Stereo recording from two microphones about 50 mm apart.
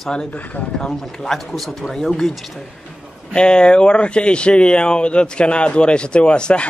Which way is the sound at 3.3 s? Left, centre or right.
Centre.